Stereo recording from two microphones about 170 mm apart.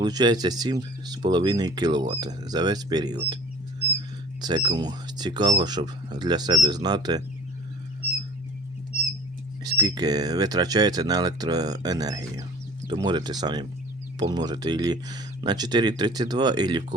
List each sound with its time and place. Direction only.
0.0 s speech: 25° right (ahead or behind)
4.4 s speech: 25° right (ahead or behind)
9.6 s speech: 25° right (ahead or behind)